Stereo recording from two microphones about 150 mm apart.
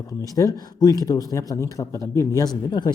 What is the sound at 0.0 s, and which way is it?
Speech, 25° left (ahead or behind).